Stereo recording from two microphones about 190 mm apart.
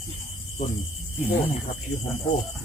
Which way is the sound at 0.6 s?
35° left (ahead or behind).